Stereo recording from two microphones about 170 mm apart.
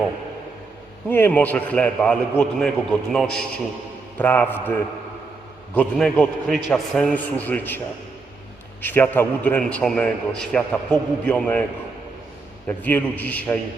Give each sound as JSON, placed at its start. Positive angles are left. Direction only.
{"t": 1.0, "sound": "a man's voice", "side_deg": 10}
{"t": 5.7, "sound": "a man's voice", "side_deg": 5}
{"t": 8.8, "sound": "a man's voice", "side_deg": 10}
{"t": 12.6, "sound": "a man's voice", "side_deg": 10}